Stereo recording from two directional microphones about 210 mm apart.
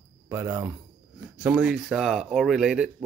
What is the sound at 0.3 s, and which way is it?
Speech, 10° right (ahead or behind).